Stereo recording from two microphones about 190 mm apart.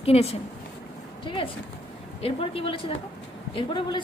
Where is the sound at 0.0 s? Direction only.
30° left (ahead or behind).